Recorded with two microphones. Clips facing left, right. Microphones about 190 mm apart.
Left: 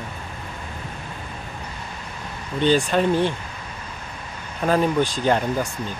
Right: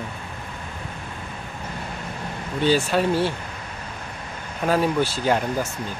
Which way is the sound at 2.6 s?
5° right (ahead or behind).